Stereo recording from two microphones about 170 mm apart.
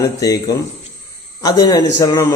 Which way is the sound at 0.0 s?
20° left (ahead or behind).